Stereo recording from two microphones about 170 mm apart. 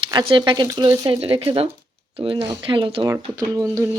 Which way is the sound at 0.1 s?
25° right (ahead or behind).